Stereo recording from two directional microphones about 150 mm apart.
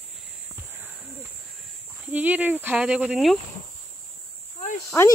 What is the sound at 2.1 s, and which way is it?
Speech, 10° right (ahead or behind).